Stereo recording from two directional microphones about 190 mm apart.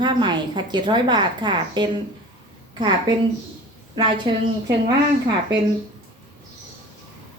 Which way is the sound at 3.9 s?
25° right (ahead or behind).